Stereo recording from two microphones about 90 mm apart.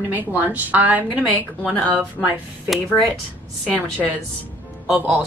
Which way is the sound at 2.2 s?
20° left (ahead or behind).